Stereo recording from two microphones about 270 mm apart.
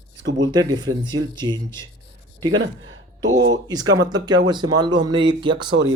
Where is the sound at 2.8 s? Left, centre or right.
Right.